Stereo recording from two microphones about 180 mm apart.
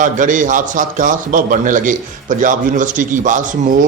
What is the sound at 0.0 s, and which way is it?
Speech, 45° right (ahead or behind).